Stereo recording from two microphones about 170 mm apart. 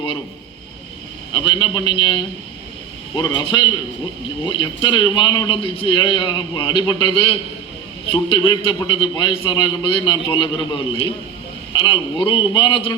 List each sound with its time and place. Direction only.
1.3 s a man's voice: 30° left (ahead or behind)